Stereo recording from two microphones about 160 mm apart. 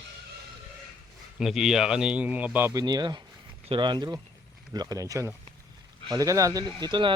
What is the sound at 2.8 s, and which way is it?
Speech, 25° right (ahead or behind).